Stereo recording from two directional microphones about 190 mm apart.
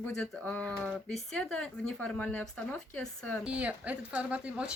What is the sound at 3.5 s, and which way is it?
Speech, 5° right (ahead or behind).